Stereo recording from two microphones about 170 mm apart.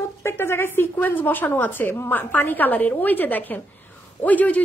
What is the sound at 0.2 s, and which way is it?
A woman's voice, 15° left (ahead or behind).